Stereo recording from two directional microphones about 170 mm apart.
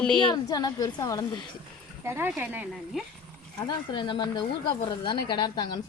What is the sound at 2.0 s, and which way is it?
Speech, 15° right (ahead or behind).